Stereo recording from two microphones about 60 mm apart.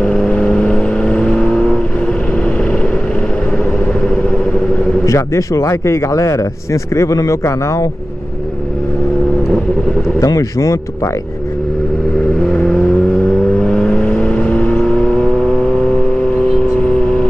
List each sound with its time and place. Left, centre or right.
0.0 s vehicle: centre
5.0 s speech: left
10.2 s speech: left
12.4 s vehicle: centre